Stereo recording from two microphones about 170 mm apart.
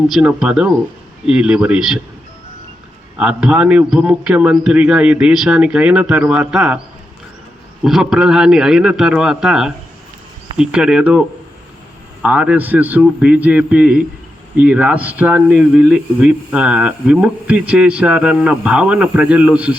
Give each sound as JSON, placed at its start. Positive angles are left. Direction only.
{"t": 0.1, "sound": "a man's voice", "side_deg": -5}
{"t": 3.2, "sound": "a man's voice", "side_deg": -5}
{"t": 7.9, "sound": "a man's voice", "side_deg": 0}
{"t": 12.2, "sound": "speech", "side_deg": -10}